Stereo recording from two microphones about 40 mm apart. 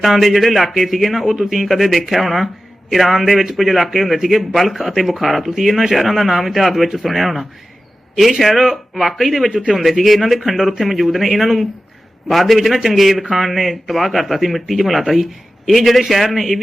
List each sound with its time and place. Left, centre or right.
0.0 s a man's voice: centre